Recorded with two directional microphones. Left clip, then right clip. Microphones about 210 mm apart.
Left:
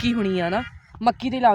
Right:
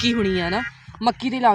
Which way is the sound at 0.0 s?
45° left (ahead or behind).